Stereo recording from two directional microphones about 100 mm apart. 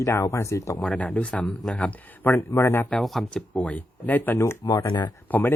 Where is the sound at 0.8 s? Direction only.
10° left (ahead or behind); by 2.8 s 30° left (ahead or behind).